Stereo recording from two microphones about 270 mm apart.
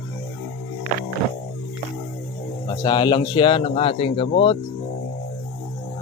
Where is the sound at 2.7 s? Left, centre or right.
Centre.